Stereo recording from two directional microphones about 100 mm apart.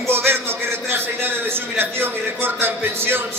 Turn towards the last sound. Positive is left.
turn(degrees=-20)  # may be behind; listen again after turning